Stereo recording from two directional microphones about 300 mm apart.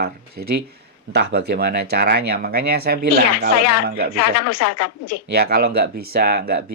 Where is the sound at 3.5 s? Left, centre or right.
Left.